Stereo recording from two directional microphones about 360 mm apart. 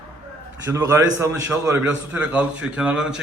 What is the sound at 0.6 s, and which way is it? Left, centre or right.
A man's voice, centre.